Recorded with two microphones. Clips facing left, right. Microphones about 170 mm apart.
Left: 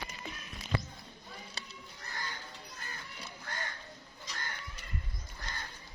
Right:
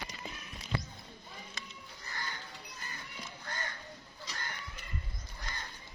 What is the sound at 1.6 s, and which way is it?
Music, 35° left (ahead or behind).